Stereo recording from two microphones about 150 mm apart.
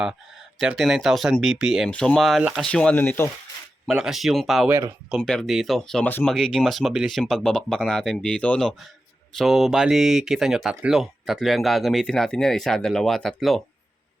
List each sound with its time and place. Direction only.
0.6 s speech: 5° right (ahead or behind); by 3.3 s 15° left (ahead or behind)
3.8 s speech: 5° right (ahead or behind)
4.7 s speech: 15° right (ahead or behind)
5.2 s speech: 5° left (ahead or behind)